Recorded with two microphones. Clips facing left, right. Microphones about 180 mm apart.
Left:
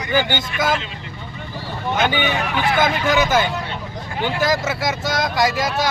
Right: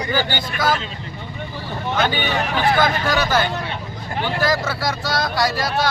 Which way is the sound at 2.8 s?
20° left (ahead or behind).